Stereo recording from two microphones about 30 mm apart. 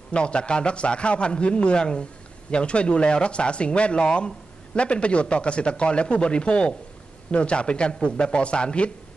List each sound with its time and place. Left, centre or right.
0.1 s speech: left